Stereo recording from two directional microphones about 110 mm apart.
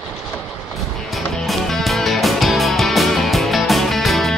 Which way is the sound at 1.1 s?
Centre (ahead or behind).